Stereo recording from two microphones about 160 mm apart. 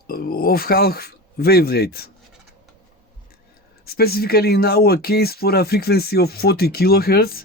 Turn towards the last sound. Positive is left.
turn(degrees=70)  # may be behind; listen again after turning